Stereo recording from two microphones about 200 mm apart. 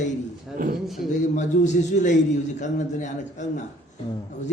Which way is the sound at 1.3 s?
40° left (ahead or behind).